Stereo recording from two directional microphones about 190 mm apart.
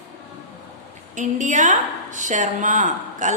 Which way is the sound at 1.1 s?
40° right (ahead or behind).